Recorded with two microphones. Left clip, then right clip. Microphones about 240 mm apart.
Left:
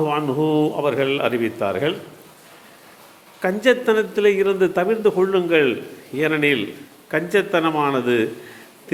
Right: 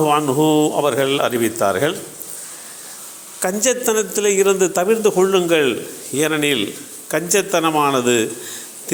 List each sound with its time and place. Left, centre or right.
0.0 s speech: centre
3.4 s speech: centre